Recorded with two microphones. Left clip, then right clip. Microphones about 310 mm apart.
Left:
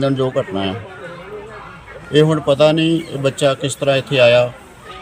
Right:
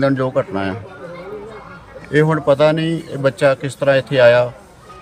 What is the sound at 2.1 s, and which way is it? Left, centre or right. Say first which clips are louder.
Speech: left 1 dB; centre.